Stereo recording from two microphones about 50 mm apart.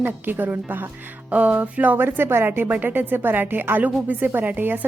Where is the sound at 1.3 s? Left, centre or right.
Right.